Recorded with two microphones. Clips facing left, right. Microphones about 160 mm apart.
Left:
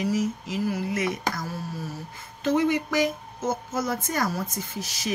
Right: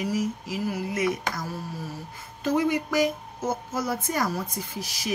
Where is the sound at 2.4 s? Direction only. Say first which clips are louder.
Left 1 dB; 10° right (ahead or behind).